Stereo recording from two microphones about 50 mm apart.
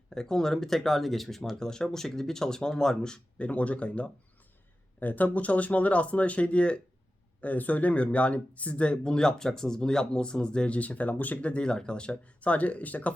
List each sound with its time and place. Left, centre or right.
0.1 s speech: centre
3.3 s speech: left
4.9 s speech: left